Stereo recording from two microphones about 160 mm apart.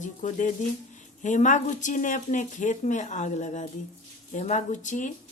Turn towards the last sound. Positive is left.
turn(degrees=50)  # may be behind; listen again after turning